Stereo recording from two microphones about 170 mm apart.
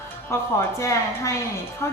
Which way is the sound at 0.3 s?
15° left (ahead or behind).